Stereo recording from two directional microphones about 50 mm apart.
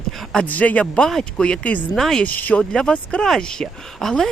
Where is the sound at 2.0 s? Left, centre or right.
Centre.